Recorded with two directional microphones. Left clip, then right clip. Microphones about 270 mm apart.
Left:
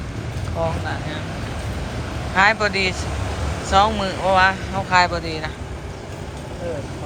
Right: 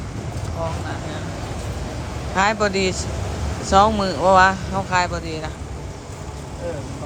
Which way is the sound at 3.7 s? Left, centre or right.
Centre.